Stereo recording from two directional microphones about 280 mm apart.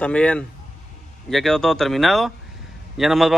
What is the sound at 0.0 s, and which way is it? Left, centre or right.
A man's voice, centre.